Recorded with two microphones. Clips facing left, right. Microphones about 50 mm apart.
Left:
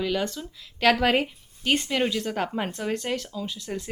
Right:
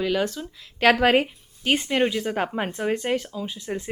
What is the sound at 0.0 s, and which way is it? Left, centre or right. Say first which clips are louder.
Speech: right 3 dB; centre.